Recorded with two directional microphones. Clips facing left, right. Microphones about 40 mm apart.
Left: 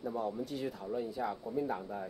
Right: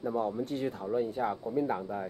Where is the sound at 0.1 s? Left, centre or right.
Right.